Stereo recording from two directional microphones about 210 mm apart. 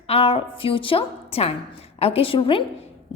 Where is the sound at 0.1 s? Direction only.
25° left (ahead or behind).